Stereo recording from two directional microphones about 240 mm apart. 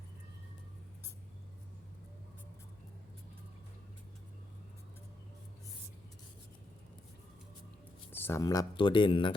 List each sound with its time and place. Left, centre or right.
8.1 s speech: centre